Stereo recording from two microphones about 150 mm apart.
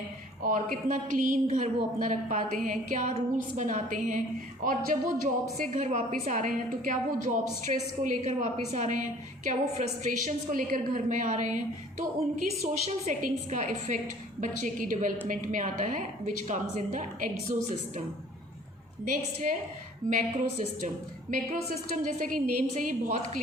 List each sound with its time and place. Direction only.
0.4 s a woman's voice: 60° right (ahead or behind)
19.0 s a woman's voice: 60° right (ahead or behind)